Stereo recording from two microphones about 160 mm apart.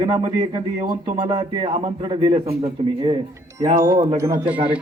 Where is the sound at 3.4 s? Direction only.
15° right (ahead or behind).